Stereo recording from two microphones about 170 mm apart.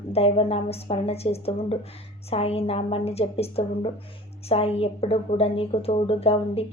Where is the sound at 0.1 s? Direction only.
35° left (ahead or behind).